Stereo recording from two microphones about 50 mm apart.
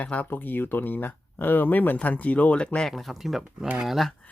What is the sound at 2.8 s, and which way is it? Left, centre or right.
Speech, centre.